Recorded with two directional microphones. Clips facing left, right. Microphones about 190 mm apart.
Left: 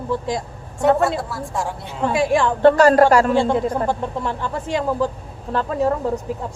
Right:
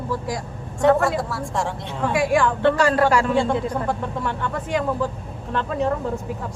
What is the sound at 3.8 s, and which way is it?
A man's voice, 30° left (ahead or behind).